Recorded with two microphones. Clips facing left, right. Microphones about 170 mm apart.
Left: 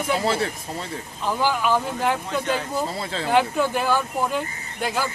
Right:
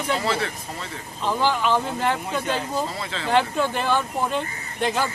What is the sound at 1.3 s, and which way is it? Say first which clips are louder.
Speech: even; 10° left (ahead or behind).